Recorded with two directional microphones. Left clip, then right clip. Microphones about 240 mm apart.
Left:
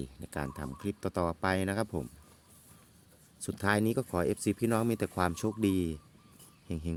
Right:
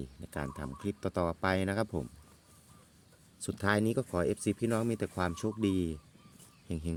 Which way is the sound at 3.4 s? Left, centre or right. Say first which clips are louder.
Left 1 dB; centre.